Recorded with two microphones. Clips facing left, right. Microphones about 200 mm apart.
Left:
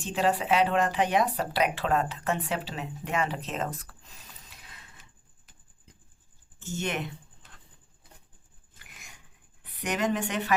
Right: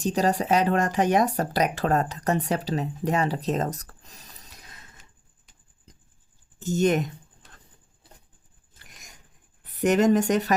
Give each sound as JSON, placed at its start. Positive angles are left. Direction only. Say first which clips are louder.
{"t": 0.0, "sound": "speech", "louder": "right 3 dB", "side_deg": -40}
{"t": 6.6, "sound": "speech", "louder": "right 10 dB", "side_deg": -40}
{"t": 8.8, "sound": "a sound", "louder": "right 1 dB", "side_deg": -40}
{"t": 9.6, "sound": "speech", "louder": "right 9 dB", "side_deg": -45}